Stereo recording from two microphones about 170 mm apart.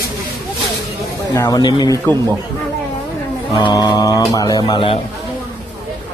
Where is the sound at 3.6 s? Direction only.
25° left (ahead or behind).